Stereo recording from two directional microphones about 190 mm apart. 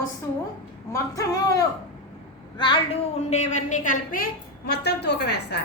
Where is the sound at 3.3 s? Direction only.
40° left (ahead or behind).